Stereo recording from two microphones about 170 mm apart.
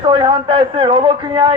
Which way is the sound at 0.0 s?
30° right (ahead or behind).